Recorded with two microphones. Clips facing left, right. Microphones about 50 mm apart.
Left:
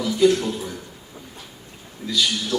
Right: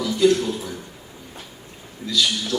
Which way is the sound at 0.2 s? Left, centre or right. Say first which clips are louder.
Even; centre.